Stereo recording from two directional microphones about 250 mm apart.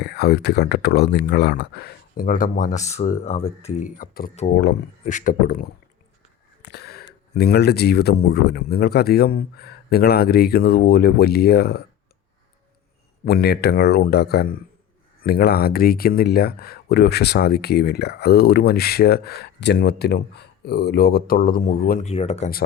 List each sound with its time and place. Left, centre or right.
0.0 s speech: left
13.2 s speech: left